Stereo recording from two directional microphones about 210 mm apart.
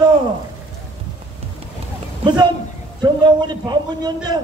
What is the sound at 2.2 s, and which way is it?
A man's voice, 20° right (ahead or behind).